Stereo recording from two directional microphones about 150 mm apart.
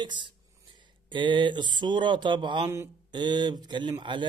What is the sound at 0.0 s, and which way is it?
A man's voice, 30° right (ahead or behind).